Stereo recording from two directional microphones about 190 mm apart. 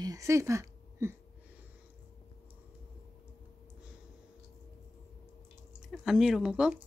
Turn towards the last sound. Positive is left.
turn(degrees=-5)  # may be behind; listen again after turning